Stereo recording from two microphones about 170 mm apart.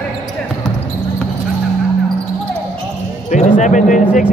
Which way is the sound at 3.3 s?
45° left (ahead or behind).